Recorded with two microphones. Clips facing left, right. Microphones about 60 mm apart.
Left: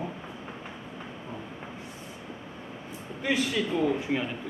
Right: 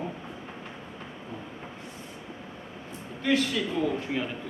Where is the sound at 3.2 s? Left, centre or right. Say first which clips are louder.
Right 2 dB; centre.